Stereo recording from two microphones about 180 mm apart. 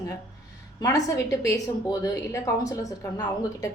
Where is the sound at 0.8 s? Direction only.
20° left (ahead or behind).